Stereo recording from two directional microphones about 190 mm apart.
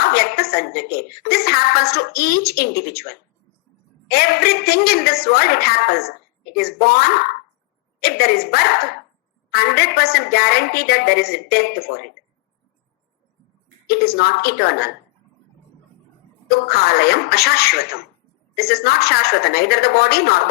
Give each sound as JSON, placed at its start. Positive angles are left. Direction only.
{"t": 0.0, "sound": "a woman's voice", "side_deg": 55}
{"t": 4.1, "sound": "a woman's voice", "side_deg": 55}
{"t": 13.8, "sound": "a woman's voice", "side_deg": 55}
{"t": 16.5, "sound": "a woman's voice", "side_deg": 55}